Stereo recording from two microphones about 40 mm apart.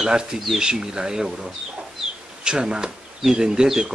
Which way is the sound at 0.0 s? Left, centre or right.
Centre.